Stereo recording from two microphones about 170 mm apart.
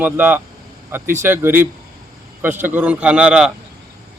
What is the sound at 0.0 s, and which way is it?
A man's voice, 10° right (ahead or behind).